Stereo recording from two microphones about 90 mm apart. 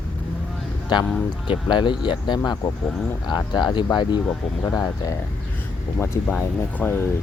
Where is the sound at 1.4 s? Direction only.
60° left (ahead or behind).